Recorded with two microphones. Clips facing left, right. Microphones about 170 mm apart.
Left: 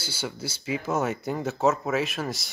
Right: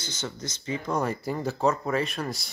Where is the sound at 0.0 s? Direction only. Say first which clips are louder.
Left 2 dB; 10° left (ahead or behind).